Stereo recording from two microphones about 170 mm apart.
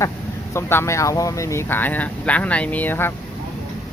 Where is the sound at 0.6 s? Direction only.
15° left (ahead or behind).